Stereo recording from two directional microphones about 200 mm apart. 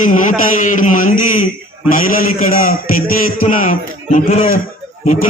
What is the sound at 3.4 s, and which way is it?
A man's voice, 40° left (ahead or behind).